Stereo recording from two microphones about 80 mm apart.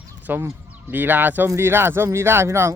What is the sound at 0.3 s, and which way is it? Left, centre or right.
Speech, right.